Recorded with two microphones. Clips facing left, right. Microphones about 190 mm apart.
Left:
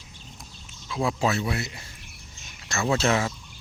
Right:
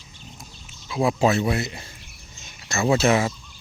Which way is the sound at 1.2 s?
20° right (ahead or behind).